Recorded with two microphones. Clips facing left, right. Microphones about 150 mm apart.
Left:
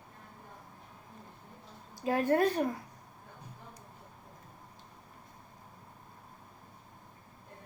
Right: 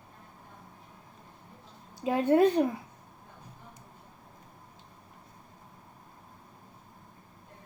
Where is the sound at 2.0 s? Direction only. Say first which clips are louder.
Right 4 dB; 20° right (ahead or behind).